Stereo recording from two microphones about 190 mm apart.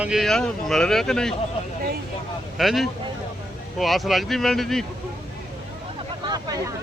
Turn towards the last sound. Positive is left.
turn(degrees=-20)  # may be behind; listen again after turning